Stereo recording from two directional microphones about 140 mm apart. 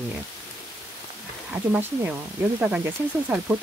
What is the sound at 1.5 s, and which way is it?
Speech, 10° right (ahead or behind).